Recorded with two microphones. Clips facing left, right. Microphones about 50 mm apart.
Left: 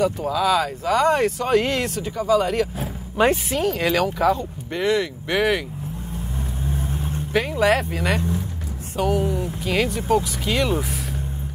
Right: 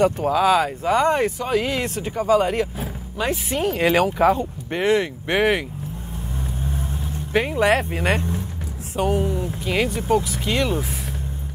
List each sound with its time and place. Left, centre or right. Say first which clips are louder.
0.0 s speech: right 3 dB; right
1.4 s speech: left 2 dB; centre
2.0 s speech: right 3 dB; right
3.5 s speech: right 1 dB; centre
3.9 s speech: right 3 dB; right
7.3 s speech: right 1 dB; centre
7.9 s speech: right 1 dB; right
8.9 s speech: even; centre
9.3 s speech: even; centre